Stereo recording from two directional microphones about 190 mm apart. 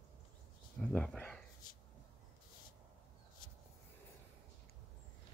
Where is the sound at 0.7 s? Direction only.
5° left (ahead or behind).